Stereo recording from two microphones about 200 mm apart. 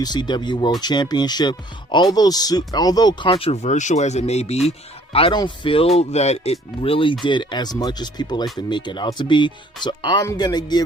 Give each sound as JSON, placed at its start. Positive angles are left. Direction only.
{"t": 0.0, "sound": "speech", "side_deg": 20}